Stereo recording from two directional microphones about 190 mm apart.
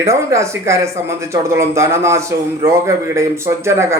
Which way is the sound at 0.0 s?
15° right (ahead or behind).